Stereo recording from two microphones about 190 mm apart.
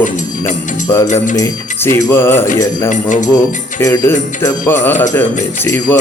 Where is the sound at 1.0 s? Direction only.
40° left (ahead or behind).